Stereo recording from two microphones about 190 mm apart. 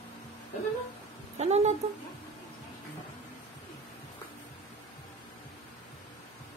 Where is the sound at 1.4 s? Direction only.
35° right (ahead or behind).